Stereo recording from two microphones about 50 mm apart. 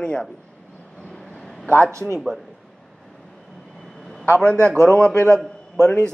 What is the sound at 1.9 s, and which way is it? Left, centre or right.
Speech, right.